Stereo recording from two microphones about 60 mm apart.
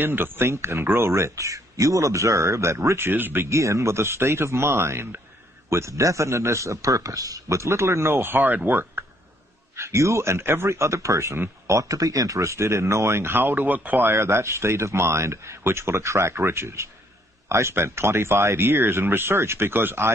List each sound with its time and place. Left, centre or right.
0.0 s a man's voice: right
3.1 s speech: right
3.4 s a man's voice: right
5.7 s a man's voice: right
9.8 s a man's voice: right
14.1 s a man's voice: right